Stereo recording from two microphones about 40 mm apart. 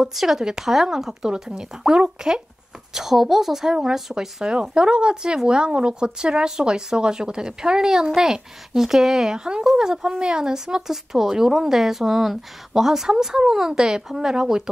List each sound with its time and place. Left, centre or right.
0.0 s speech: centre